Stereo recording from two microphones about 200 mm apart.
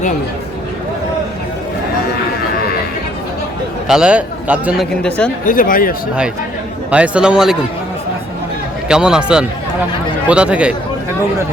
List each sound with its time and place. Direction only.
3.8 s speech: 5° right (ahead or behind)
5.0 s speech: 5° left (ahead or behind)
5.5 s speech: 45° left (ahead or behind)
6.9 s speech: 5° right (ahead or behind)
8.9 s speech: 5° right (ahead or behind)